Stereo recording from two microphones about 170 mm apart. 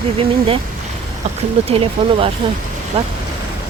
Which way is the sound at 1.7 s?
35° right (ahead or behind).